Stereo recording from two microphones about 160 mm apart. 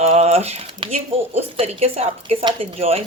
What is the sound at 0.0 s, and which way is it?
Speech, 40° right (ahead or behind).